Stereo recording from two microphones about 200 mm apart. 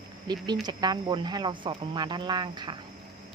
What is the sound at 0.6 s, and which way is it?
Speech, 20° right (ahead or behind).